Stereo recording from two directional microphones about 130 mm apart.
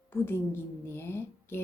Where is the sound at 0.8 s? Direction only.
20° left (ahead or behind).